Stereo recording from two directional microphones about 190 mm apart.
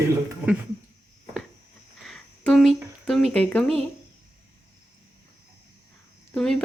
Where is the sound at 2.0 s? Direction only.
5° left (ahead or behind).